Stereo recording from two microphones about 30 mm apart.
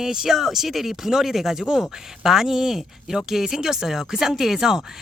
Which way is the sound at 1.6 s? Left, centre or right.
Right.